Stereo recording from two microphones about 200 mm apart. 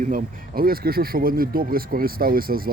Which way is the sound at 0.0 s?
45° right (ahead or behind).